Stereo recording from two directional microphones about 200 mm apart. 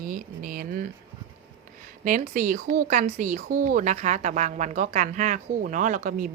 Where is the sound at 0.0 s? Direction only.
45° right (ahead or behind).